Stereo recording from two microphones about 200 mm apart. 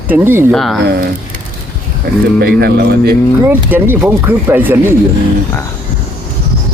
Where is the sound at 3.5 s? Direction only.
10° right (ahead or behind).